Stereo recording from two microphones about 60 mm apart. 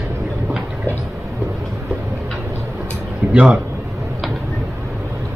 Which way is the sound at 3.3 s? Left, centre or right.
Centre.